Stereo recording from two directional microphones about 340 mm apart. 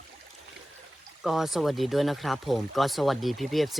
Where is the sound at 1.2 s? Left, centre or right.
Centre.